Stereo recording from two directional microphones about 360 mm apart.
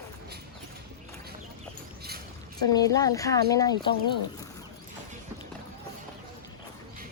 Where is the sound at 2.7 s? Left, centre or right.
Centre.